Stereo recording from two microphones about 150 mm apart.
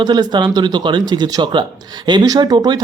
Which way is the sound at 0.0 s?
25° right (ahead or behind).